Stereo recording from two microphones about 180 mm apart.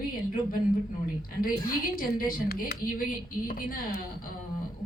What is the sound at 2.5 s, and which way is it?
Speech, 55° left (ahead or behind).